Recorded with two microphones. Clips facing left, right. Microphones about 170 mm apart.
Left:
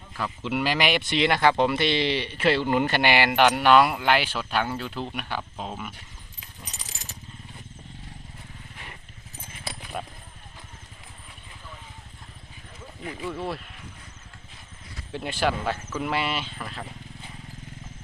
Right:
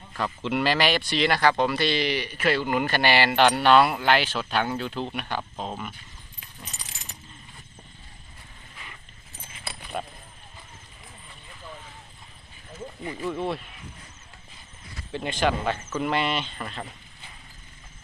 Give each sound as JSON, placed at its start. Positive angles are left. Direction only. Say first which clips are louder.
{"t": 0.1, "sound": "speech", "louder": "right 1 dB", "side_deg": 5}
{"t": 9.9, "sound": "speech", "louder": "right 2 dB", "side_deg": 0}
{"t": 13.1, "sound": "speech", "louder": "right 2 dB", "side_deg": 0}
{"t": 15.1, "sound": "speech", "louder": "right 1 dB", "side_deg": 5}